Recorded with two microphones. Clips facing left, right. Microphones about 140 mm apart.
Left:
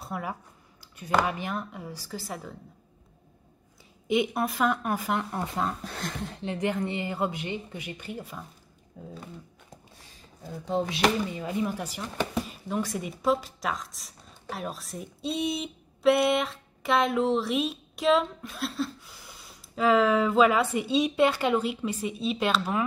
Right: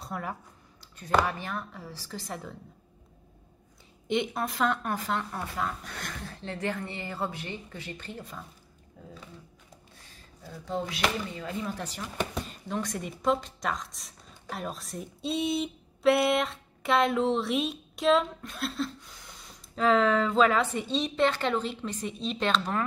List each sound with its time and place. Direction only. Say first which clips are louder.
0.0 s speech: left 2 dB; 5° left (ahead or behind)
4.1 s speech: left 3 dB; 10° left (ahead or behind)
5.3 s speech: left 3 dB; 25° left (ahead or behind)
10.4 s speech: left 4 dB; 20° left (ahead or behind)